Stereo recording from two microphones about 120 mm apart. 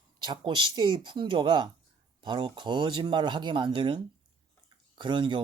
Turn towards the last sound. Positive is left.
turn(degrees=-40)  # may be behind; listen again after turning